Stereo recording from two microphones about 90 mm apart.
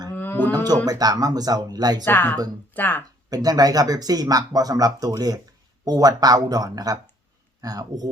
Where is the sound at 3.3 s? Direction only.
45° right (ahead or behind).